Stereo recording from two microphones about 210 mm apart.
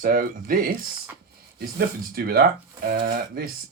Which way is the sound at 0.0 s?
45° right (ahead or behind).